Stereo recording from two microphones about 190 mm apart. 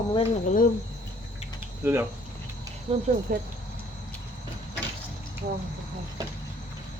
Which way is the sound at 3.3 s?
45° right (ahead or behind).